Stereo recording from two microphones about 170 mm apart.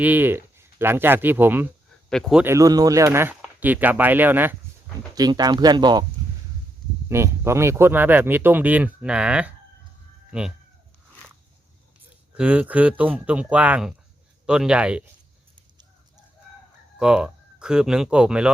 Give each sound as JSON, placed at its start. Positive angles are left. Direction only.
{"t": 0.0, "sound": "speech", "side_deg": -10}
{"t": 2.0, "sound": "speech", "side_deg": 0}
{"t": 2.4, "sound": "speech", "side_deg": -15}
{"t": 5.1, "sound": "speech", "side_deg": -25}
{"t": 7.1, "sound": "speech", "side_deg": -15}
{"t": 12.3, "sound": "speech", "side_deg": -5}
{"t": 17.0, "sound": "speech", "side_deg": -5}